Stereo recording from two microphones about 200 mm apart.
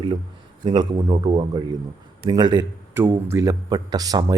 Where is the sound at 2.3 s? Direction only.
20° right (ahead or behind).